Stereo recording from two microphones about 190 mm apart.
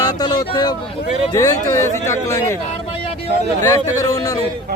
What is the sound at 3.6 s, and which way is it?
Speech, 20° left (ahead or behind).